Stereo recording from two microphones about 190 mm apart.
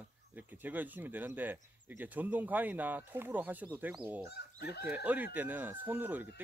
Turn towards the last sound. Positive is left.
turn(degrees=-10)  # may be behind; listen again after turning